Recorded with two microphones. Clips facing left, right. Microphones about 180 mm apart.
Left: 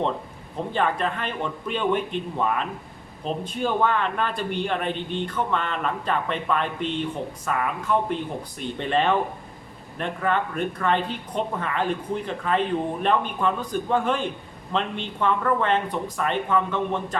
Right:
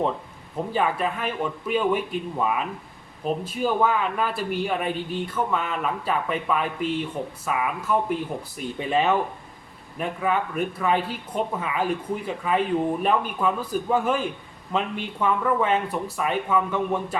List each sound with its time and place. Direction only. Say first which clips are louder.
0.7 s speech: even; 5° right (ahead or behind)